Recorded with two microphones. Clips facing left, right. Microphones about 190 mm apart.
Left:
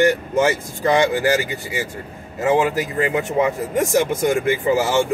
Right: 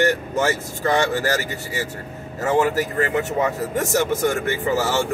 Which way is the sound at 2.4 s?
15° left (ahead or behind).